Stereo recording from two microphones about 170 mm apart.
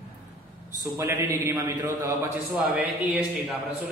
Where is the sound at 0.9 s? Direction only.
15° right (ahead or behind).